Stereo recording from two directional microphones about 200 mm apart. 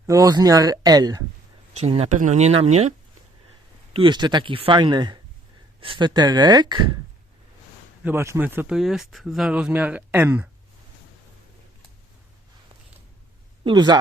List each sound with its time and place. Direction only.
0.0 s speech: 15° right (ahead or behind)
1.7 s speech: 30° right (ahead or behind)
3.9 s speech: 25° right (ahead or behind)
8.0 s speech: 15° right (ahead or behind)
13.7 s speech: 20° right (ahead or behind)